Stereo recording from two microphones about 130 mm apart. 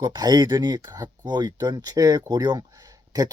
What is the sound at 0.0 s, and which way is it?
Speech, 30° right (ahead or behind).